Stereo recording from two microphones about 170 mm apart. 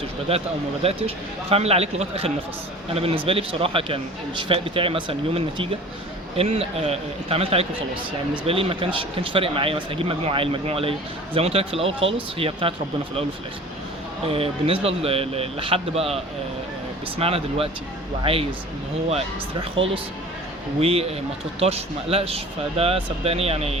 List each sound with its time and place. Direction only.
0.3 s a man's voice: 35° right (ahead or behind)
14.3 s a man's voice: 35° right (ahead or behind)
20.8 s a man's voice: 35° right (ahead or behind)